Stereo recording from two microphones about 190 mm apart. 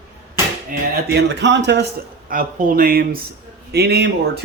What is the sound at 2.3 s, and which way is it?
A man's voice, 45° right (ahead or behind).